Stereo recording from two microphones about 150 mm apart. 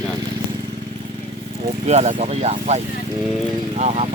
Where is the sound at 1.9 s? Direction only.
50° right (ahead or behind).